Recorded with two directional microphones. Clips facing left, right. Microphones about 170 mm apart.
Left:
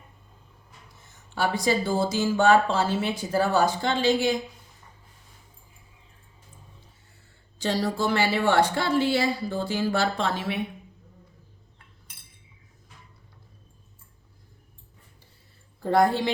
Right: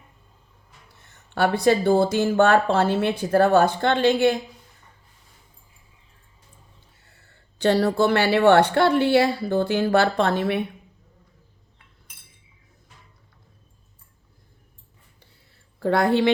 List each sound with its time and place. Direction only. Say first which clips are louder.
0.9 s speech: right 5 dB; 65° right (ahead or behind)
7.0 s speech: right 1 dB; 65° right (ahead or behind)
15.8 s a woman's voice: right 2 dB; 70° right (ahead or behind)